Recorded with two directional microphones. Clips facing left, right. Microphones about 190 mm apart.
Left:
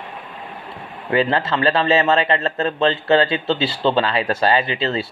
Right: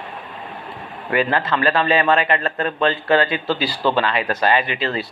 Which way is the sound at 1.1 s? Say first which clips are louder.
Left 1 dB; 25° left (ahead or behind).